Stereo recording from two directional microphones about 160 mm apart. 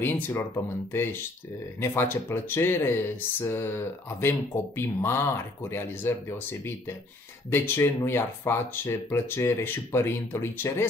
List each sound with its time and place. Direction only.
0.0 s speech: 15° left (ahead or behind)
1.8 s speech: 15° left (ahead or behind)